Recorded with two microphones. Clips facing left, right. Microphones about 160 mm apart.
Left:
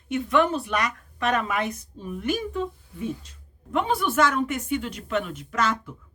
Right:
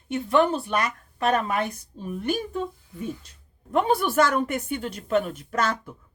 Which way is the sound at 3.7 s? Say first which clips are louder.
Right 2 dB; 40° right (ahead or behind).